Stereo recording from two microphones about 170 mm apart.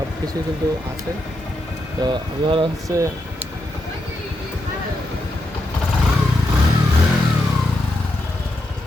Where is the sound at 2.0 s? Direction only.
30° right (ahead or behind).